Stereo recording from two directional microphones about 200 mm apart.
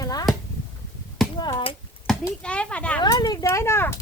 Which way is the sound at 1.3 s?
20° left (ahead or behind).